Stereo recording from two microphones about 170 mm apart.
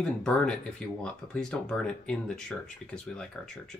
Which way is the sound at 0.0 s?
5° left (ahead or behind).